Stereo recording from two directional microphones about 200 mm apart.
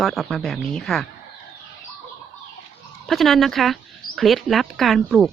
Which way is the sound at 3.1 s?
Centre (ahead or behind).